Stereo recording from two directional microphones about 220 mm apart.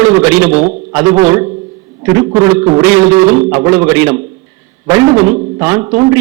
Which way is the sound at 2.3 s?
10° right (ahead or behind).